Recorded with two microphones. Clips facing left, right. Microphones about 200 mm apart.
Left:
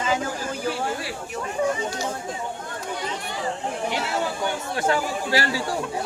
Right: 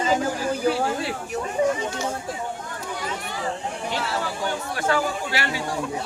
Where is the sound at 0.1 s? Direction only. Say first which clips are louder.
Right 3 dB; 35° right (ahead or behind).